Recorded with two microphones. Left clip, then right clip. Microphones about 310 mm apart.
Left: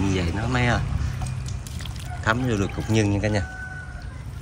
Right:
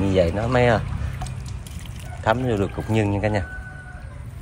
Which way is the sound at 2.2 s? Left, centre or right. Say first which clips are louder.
Right 3 dB; centre.